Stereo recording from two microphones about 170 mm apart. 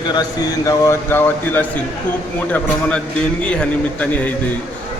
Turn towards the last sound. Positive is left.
turn(degrees=10)  # may be behind; listen again after turning